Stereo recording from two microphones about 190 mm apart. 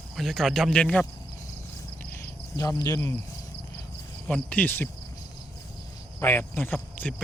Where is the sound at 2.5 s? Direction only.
20° left (ahead or behind).